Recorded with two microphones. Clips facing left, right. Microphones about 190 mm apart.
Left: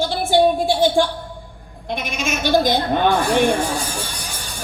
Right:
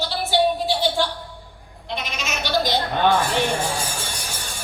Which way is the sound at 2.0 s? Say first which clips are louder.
Left 9 dB; 50° left (ahead or behind).